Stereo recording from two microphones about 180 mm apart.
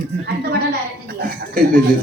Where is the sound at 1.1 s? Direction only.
60° right (ahead or behind).